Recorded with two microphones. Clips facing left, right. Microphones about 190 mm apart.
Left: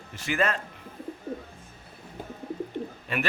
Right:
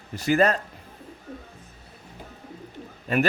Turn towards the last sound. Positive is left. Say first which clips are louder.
# right 7 dB
turn(degrees=-40)  # may be behind; listen again after turning